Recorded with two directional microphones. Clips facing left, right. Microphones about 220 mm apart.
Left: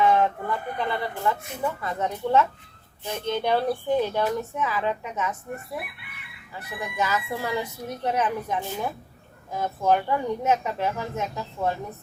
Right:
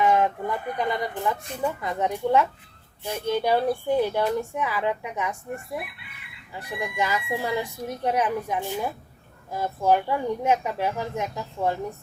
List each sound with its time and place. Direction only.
0.0 s speech: 15° right (ahead or behind)
6.5 s speech: 15° right (ahead or behind)